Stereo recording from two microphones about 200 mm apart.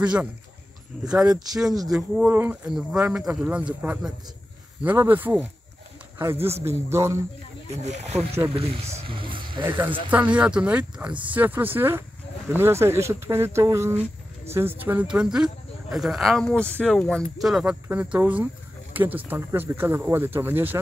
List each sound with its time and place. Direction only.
0.0 s speech: 5° right (ahead or behind)
6.6 s speech: 15° right (ahead or behind)
7.8 s speech: 35° right (ahead or behind)
10.1 s speech: 5° right (ahead or behind)